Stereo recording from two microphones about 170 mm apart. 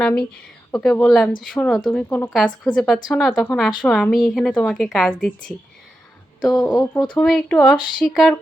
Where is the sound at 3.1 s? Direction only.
Centre (ahead or behind).